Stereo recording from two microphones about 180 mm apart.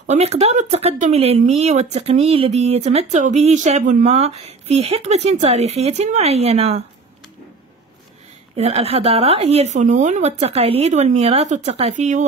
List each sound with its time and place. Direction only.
0.0 s speech: 35° right (ahead or behind)
8.5 s speech: 35° right (ahead or behind)